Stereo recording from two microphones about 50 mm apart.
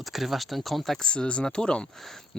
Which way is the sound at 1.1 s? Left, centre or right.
Left.